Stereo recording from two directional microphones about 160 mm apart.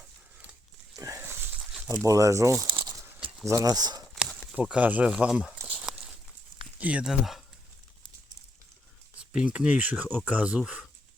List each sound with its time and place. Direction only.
0.9 s pig: 20° right (ahead or behind)
1.9 s speech: 20° right (ahead or behind)
4.1 s a sound: 5° left (ahead or behind)
4.5 s speech: 10° right (ahead or behind)
5.5 s walk: 10° right (ahead or behind)
6.7 s speech: 10° right (ahead or behind)
9.3 s speech: 5° right (ahead or behind)